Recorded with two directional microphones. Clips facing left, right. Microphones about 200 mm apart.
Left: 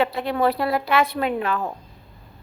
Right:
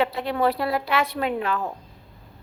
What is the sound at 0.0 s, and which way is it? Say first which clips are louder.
A woman's voice: left 1 dB; 50° left (ahead or behind).